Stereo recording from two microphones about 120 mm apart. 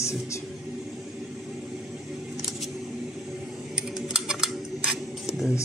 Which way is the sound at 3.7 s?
5° right (ahead or behind).